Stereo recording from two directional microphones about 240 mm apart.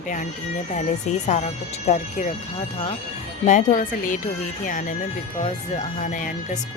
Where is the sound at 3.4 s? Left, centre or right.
Left.